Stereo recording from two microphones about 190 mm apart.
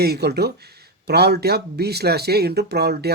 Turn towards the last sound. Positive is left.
turn(degrees=-60)  # may be behind; listen again after turning